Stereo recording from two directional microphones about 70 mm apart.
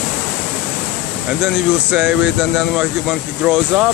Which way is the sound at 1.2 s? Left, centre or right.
Centre.